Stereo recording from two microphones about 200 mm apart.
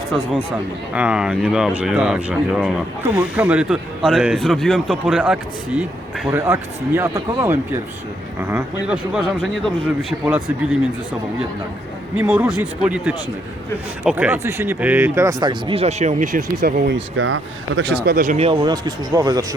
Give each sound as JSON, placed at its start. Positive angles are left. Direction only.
{"t": 0.9, "sound": "speech", "side_deg": -5}
{"t": 12.1, "sound": "speech", "side_deg": -10}
{"t": 17.2, "sound": "speech", "side_deg": -80}